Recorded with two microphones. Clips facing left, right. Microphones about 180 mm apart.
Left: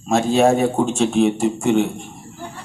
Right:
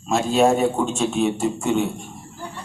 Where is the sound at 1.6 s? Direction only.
60° left (ahead or behind).